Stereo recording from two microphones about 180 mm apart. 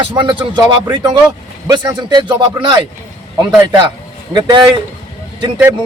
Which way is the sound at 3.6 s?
25° right (ahead or behind).